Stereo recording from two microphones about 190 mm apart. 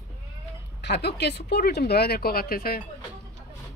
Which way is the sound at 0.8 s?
60° left (ahead or behind).